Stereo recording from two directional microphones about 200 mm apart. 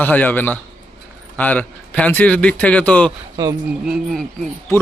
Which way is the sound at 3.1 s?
20° right (ahead or behind).